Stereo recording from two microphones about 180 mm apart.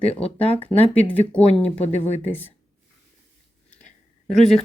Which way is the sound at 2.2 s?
10° left (ahead or behind).